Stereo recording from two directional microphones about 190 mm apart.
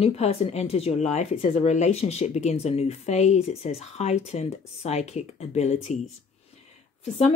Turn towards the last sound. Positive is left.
turn(degrees=35)  # may be behind; listen again after turning